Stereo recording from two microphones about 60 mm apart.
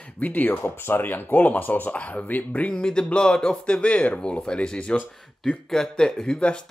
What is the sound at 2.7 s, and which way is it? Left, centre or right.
Speech, centre.